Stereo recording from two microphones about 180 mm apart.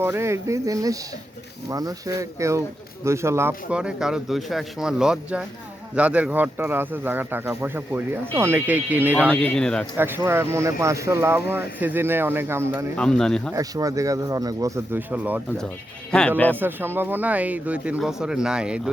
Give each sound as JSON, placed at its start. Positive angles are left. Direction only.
{"t": 0.0, "sound": "speech", "side_deg": -15}
{"t": 9.2, "sound": "speech", "side_deg": 10}
{"t": 10.0, "sound": "speech", "side_deg": -10}
{"t": 13.0, "sound": "speech", "side_deg": 5}
{"t": 13.5, "sound": "speech", "side_deg": -20}
{"t": 16.1, "sound": "speech", "side_deg": 5}
{"t": 16.6, "sound": "speech", "side_deg": -10}